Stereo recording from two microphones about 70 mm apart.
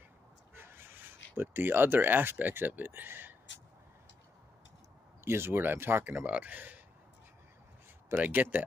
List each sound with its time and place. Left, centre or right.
0.6 s speech: right
5.2 s speech: right
8.1 s speech: right